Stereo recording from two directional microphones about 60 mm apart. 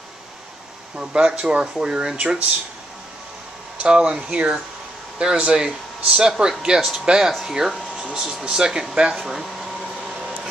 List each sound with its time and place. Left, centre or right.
0.9 s speech: centre
2.1 s speech: right
3.8 s speech: centre